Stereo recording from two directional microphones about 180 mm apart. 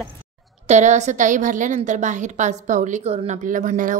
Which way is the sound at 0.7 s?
40° right (ahead or behind).